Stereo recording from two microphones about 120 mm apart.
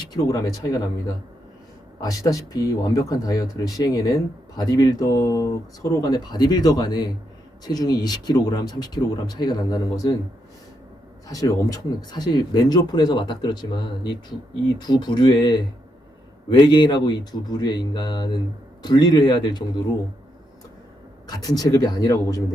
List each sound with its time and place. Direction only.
0.1 s speech: 30° left (ahead or behind)
11.3 s speech: 30° left (ahead or behind)
21.2 s speech: 30° left (ahead or behind)